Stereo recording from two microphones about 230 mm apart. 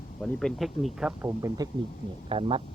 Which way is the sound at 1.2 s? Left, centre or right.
Centre.